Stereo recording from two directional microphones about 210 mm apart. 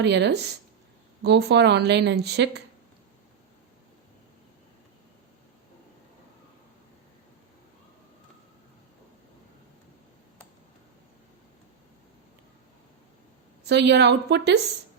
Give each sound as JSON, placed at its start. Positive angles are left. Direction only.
{"t": 0.0, "sound": "speech", "side_deg": -55}
{"t": 13.7, "sound": "speech", "side_deg": -55}